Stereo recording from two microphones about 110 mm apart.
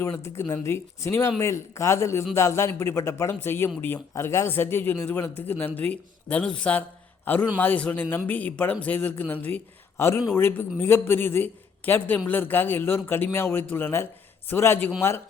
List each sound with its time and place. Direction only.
0.3 s speech: 25° left (ahead or behind)